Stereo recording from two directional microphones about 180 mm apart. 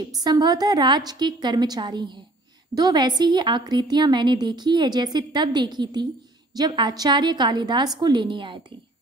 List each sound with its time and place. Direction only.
0.2 s a woman's voice: 20° right (ahead or behind)